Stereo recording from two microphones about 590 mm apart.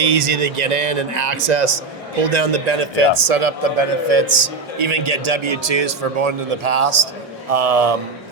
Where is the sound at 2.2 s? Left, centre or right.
Right.